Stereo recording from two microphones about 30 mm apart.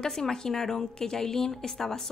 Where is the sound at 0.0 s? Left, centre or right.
Centre.